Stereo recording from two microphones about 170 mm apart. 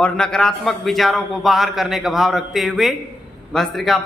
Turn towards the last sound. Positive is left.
turn(degrees=0)  # may be behind; listen again after turning